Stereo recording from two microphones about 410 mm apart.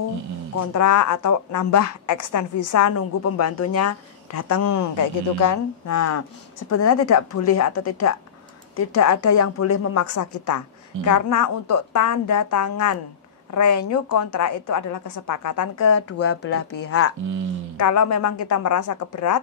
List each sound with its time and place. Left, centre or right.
0.6 s a woman's voice: left
17.7 s a woman's voice: left